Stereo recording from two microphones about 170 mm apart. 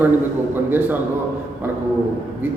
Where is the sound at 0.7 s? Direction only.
10° right (ahead or behind).